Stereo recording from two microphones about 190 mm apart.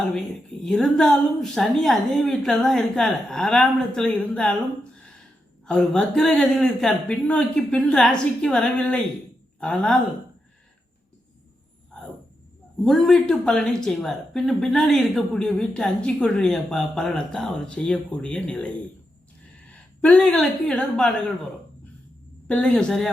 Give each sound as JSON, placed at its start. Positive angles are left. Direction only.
{"t": 0.0, "sound": "speech", "side_deg": 0}
{"t": 12.8, "sound": "speech", "side_deg": 0}
{"t": 19.7, "sound": "speech", "side_deg": 5}
{"t": 22.4, "sound": "speech", "side_deg": 5}